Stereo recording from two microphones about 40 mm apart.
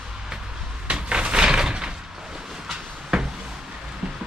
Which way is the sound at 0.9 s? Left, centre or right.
Right.